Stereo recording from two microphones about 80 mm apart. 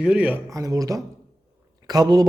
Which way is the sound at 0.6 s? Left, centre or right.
Right.